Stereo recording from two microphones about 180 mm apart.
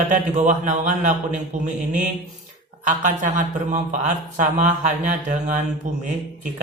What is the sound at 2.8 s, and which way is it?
Speech, 45° right (ahead or behind).